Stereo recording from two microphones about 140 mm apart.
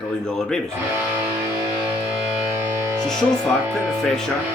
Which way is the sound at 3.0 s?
5° left (ahead or behind).